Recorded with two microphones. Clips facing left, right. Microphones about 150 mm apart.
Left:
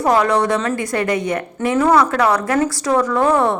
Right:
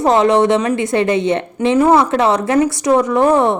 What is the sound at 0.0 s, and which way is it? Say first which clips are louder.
A woman's voice: right 4 dB; 20° right (ahead or behind).